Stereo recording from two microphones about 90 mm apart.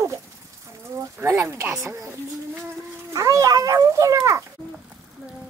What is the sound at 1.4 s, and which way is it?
Speech, 35° right (ahead or behind).